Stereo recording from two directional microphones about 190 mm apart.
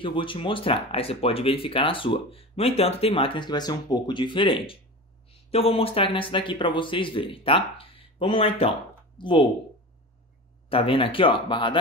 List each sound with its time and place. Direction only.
0.0 s speech: 25° left (ahead or behind)
10.7 s speech: 30° left (ahead or behind)